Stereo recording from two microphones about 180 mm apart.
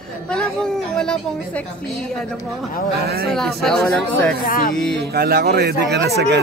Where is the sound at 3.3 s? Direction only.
Centre (ahead or behind).